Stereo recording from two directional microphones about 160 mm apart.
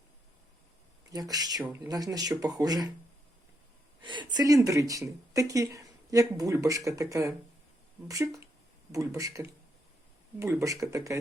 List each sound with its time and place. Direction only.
1.1 s speech: 25° right (ahead or behind)
4.0 s speech: 30° right (ahead or behind)